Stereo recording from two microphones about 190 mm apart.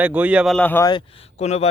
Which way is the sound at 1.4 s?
35° left (ahead or behind).